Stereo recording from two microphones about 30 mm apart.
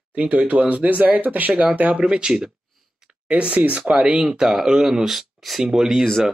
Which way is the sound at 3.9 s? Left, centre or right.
Right.